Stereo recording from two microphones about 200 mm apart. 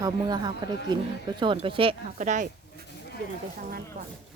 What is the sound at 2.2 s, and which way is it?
Speech, 40° right (ahead or behind).